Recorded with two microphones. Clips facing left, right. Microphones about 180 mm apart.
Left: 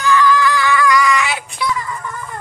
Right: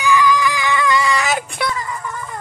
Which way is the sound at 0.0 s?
15° right (ahead or behind).